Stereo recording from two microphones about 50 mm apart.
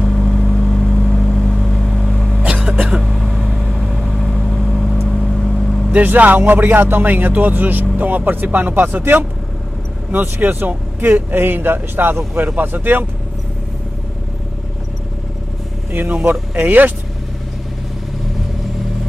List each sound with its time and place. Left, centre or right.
0.0 s vehicle: centre
2.4 s a sound: right
3.0 s vehicle: centre
5.9 s speech: right
10.1 s speech: right
15.9 s speech: right